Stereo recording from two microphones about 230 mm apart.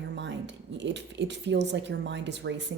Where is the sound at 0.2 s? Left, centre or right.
Right.